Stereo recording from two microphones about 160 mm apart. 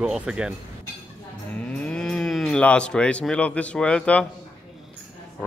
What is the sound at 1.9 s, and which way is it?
Speech, 5° left (ahead or behind).